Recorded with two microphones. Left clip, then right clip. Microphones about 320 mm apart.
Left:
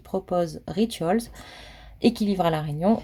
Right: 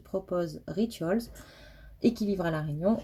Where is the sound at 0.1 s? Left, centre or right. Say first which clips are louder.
Left 6 dB; left.